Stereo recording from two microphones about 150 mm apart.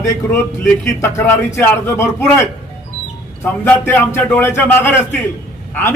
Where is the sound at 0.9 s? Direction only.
20° left (ahead or behind).